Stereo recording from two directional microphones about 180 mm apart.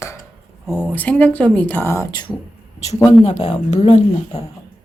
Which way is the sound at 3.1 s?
35° left (ahead or behind).